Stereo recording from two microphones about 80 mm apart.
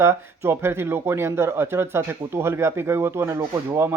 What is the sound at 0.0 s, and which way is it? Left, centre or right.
Speech, right.